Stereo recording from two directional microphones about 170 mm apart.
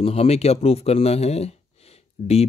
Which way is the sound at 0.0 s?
35° left (ahead or behind).